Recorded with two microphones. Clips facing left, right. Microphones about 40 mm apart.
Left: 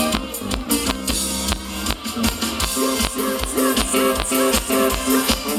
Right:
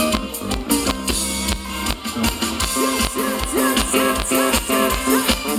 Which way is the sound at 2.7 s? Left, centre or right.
Right.